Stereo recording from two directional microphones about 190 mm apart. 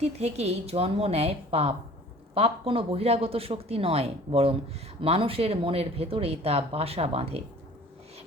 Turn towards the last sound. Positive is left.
turn(degrees=-30)  # may be behind; listen again after turning